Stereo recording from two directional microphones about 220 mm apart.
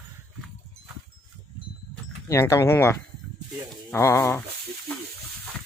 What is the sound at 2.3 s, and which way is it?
Speech, 15° left (ahead or behind).